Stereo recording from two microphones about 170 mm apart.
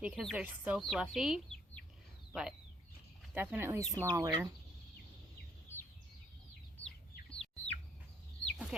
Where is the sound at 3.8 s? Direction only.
10° left (ahead or behind).